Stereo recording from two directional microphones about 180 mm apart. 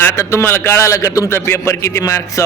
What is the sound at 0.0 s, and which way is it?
A man's voice, 15° left (ahead or behind).